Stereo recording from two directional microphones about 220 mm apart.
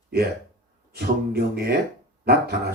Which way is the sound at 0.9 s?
45° right (ahead or behind).